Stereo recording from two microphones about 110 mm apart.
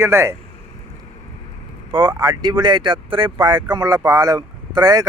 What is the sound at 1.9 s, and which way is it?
Speech, 45° right (ahead or behind).